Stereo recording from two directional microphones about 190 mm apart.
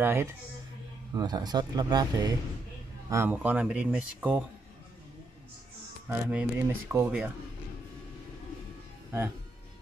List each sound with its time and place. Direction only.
0.0 s speech: 15° right (ahead or behind)
6.0 s speech: 10° right (ahead or behind)